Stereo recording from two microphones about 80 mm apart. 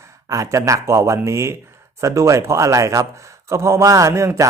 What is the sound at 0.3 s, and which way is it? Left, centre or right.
Speech, right.